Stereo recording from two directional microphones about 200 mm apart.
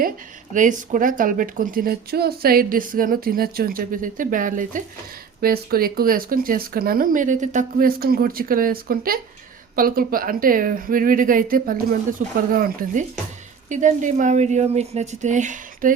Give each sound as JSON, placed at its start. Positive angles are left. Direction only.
{"t": 0.5, "sound": "speech", "side_deg": -40}